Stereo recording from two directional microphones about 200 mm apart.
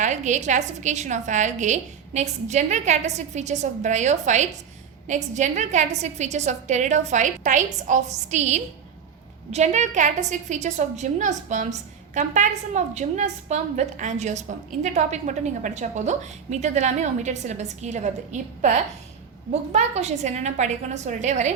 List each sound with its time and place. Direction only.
0.0 s a woman's voice: 35° right (ahead or behind)